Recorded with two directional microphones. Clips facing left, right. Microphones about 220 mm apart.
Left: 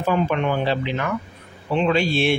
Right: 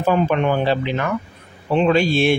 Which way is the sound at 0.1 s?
45° right (ahead or behind).